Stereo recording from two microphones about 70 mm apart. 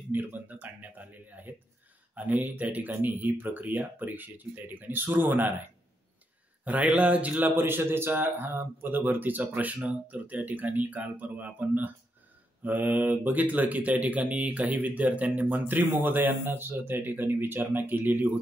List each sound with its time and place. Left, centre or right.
0.1 s speech: right
6.6 s speech: right